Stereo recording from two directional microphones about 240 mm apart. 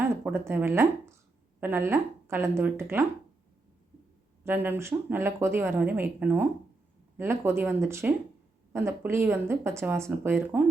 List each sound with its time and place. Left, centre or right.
0.0 s speech: centre
4.4 s speech: centre